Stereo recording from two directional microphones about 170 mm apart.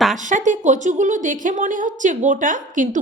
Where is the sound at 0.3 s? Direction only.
45° right (ahead or behind).